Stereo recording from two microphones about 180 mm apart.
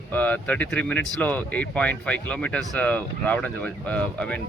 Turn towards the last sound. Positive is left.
turn(degrees=5)  # may be behind; listen again after turning